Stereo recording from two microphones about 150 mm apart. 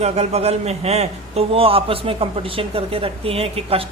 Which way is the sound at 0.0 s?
45° right (ahead or behind).